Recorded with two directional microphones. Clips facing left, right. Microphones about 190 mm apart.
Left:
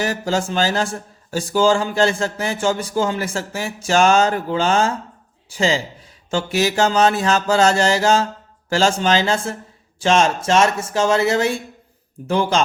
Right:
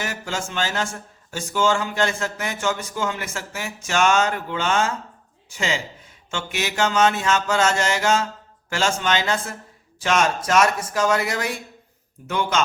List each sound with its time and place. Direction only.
0.0 s speech: 35° left (ahead or behind)